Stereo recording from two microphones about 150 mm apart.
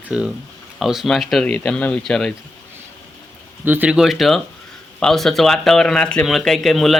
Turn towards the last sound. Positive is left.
turn(degrees=0)  # may be behind; listen again after turning